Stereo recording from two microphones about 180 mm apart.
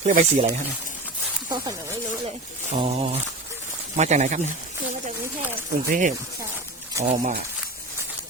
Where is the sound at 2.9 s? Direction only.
35° right (ahead or behind).